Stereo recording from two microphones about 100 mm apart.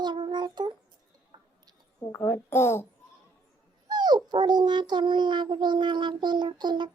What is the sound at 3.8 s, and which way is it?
Dog, 45° right (ahead or behind).